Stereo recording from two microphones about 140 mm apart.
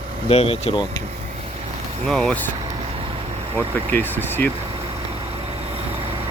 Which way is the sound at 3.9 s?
15° left (ahead or behind).